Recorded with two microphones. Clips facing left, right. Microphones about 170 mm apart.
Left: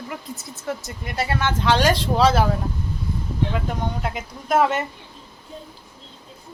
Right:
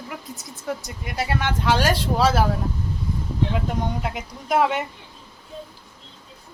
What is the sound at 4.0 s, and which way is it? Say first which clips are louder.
Speech: left 1 dB; centre (ahead or behind).